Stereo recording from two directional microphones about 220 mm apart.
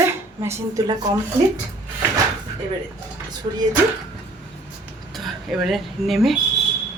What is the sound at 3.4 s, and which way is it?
Speech, 30° right (ahead or behind).